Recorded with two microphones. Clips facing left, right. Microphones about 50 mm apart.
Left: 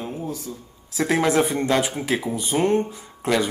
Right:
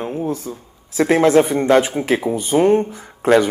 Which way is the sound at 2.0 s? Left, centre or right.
Right.